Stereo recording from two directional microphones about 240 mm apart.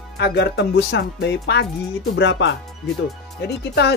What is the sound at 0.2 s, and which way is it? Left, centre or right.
Speech, left.